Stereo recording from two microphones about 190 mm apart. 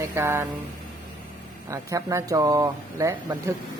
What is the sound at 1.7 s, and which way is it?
Speech, 15° right (ahead or behind).